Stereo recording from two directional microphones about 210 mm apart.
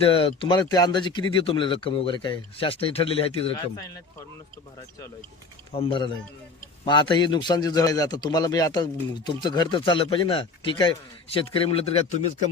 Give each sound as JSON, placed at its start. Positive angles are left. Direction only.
{"t": 0.0, "sound": "speech", "side_deg": 25}
{"t": 5.7, "sound": "speech", "side_deg": 25}